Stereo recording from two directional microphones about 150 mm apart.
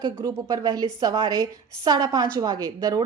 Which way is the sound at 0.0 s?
25° right (ahead or behind).